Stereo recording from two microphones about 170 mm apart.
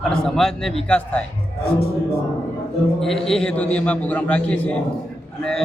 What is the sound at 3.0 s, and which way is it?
A man's voice, centre (ahead or behind).